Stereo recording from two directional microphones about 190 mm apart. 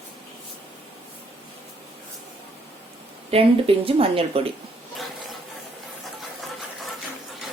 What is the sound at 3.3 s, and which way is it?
Speech, 30° right (ahead or behind).